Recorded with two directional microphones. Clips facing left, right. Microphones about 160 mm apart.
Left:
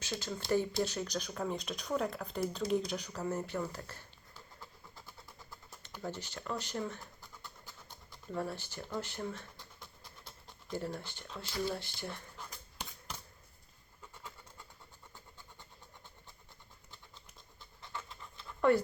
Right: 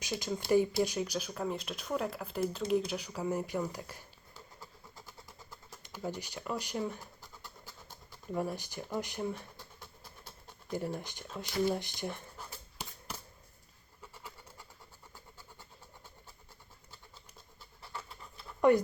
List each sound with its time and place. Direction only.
0.0 s speech: 15° right (ahead or behind)
5.8 s speech: 10° right (ahead or behind)
8.3 s speech: 15° right (ahead or behind)
10.7 s speech: 15° right (ahead or behind)
12.5 s a sound: 5° right (ahead or behind)
17.6 s scratch: 10° right (ahead or behind)